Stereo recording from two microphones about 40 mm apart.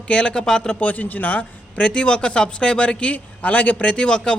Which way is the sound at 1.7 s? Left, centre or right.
Left.